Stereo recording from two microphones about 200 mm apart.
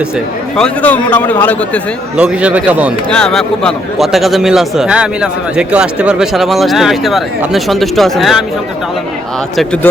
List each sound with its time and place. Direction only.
0.5 s speech: 5° left (ahead or behind)
2.1 s speech: 5° right (ahead or behind)
3.1 s a man's voice: 5° left (ahead or behind)